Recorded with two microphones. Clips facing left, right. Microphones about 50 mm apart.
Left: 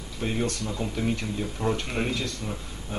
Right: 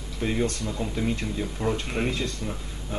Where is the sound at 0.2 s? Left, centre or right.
Centre.